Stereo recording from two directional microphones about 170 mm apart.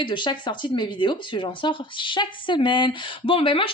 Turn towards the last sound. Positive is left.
turn(degrees=30)  # may be behind; listen again after turning